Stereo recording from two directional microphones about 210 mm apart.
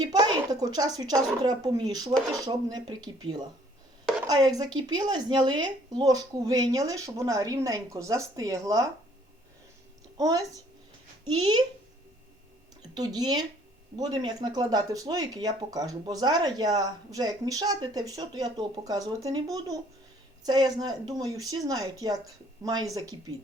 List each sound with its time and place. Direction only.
0.0 s a woman's voice: 20° right (ahead or behind)
10.2 s speech: 15° right (ahead or behind)
12.9 s speech: 20° right (ahead or behind)